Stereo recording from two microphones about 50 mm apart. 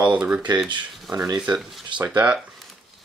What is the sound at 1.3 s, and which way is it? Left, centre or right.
Speech, centre.